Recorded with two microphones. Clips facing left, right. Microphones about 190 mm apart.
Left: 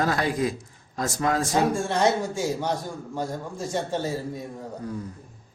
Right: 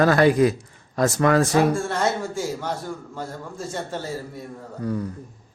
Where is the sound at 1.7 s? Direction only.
15° left (ahead or behind).